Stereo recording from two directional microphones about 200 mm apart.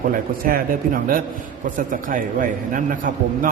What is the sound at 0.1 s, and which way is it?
A man's voice, 45° right (ahead or behind).